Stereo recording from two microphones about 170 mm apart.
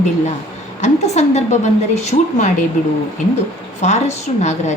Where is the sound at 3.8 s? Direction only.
45° left (ahead or behind).